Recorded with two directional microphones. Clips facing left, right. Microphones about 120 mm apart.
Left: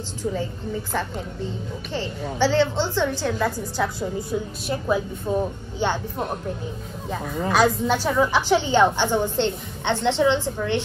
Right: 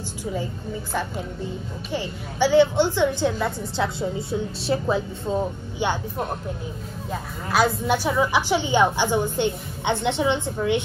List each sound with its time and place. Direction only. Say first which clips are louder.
1.9 s a woman's voice: left 1 dB; 15° right (ahead or behind)
7.5 s a woman's voice: even; 10° right (ahead or behind)